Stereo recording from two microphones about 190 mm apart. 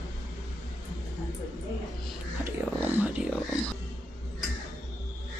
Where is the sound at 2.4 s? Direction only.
10° right (ahead or behind).